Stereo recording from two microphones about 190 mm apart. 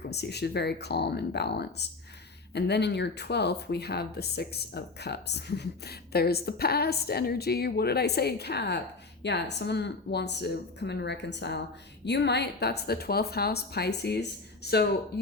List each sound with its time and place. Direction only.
0.0 s speech: 60° left (ahead or behind)